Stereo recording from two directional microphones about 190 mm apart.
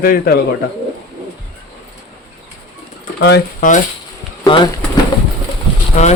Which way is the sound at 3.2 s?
60° left (ahead or behind).